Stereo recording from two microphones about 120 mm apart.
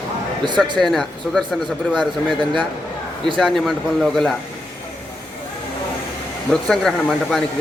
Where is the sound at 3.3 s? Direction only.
Centre (ahead or behind).